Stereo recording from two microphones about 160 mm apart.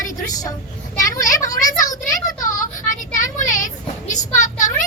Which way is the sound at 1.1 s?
55° left (ahead or behind).